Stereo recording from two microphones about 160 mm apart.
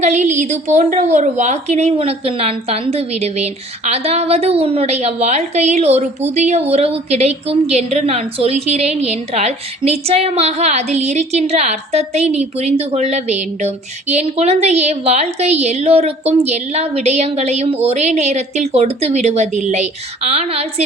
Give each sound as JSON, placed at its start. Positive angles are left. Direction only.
{"t": 0.0, "sound": "a woman's voice", "side_deg": -50}